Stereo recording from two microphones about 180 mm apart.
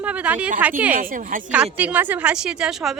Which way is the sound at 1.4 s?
10° right (ahead or behind).